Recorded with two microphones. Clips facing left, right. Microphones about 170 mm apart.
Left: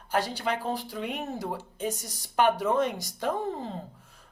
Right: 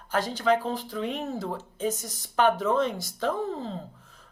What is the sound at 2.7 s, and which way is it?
Speech, 15° left (ahead or behind).